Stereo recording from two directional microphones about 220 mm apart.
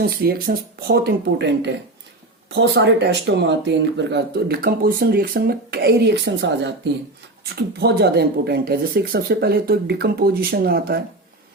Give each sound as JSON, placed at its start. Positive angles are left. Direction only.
{"t": 0.0, "sound": "speech", "side_deg": -45}